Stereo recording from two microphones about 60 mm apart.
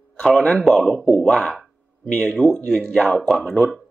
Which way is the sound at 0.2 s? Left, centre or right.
Centre.